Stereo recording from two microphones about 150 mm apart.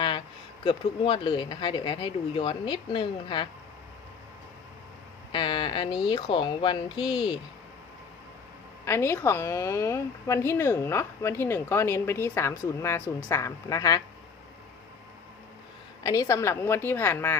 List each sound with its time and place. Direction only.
0.6 s speech: 35° left (ahead or behind)
5.3 s speech: 30° left (ahead or behind)
8.8 s a woman's voice: 20° left (ahead or behind)
16.0 s a woman's voice: 20° left (ahead or behind)